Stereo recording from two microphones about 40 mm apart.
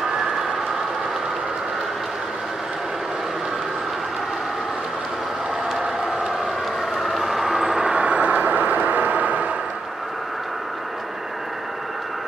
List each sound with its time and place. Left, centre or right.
7.0 s vehicle: centre
7.9 s vehicle: right